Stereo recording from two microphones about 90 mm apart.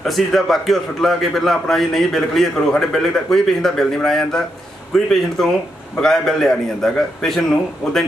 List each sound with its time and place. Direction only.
0.0 s a man's voice: centre (ahead or behind)